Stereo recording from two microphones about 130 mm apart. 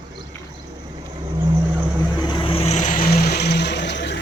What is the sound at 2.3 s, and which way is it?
Vehicle, 45° left (ahead or behind).